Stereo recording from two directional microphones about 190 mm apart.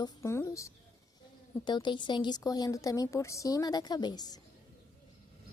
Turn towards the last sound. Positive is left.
turn(degrees=20)  # may be behind; listen again after turning